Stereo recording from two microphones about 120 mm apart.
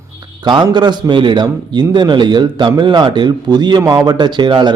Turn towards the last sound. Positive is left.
turn(degrees=-40)  # may be behind; listen again after turning